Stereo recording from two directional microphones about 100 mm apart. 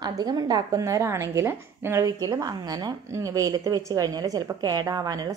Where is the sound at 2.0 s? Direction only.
35° right (ahead or behind).